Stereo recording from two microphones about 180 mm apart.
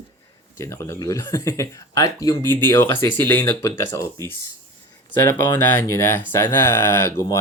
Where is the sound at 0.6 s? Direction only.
15° left (ahead or behind).